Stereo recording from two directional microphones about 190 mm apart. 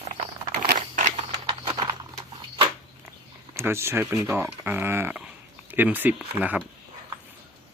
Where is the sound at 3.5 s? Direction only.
15° right (ahead or behind).